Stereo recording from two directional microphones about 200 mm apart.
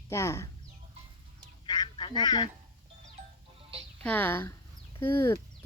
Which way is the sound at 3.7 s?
30° right (ahead or behind).